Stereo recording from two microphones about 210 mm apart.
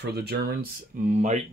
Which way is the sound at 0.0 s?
50° right (ahead or behind).